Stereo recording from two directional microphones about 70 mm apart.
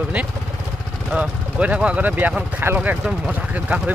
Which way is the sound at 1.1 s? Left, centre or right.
Centre.